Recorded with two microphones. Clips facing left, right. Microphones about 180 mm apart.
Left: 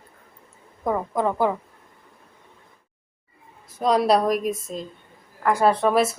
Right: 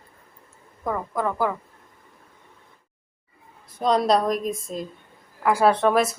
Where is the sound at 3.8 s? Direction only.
5° left (ahead or behind).